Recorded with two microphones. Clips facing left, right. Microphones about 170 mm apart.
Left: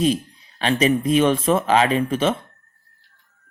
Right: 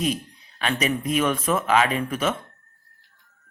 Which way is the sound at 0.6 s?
30° left (ahead or behind).